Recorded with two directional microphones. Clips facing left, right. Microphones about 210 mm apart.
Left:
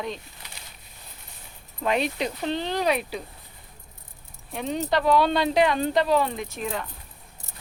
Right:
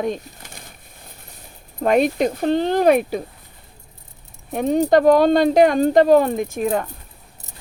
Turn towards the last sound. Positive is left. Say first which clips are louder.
# right 10 dB
turn(degrees=-50)  # may be behind; listen again after turning